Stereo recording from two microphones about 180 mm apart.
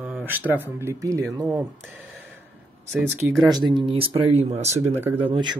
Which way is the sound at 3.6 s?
25° right (ahead or behind).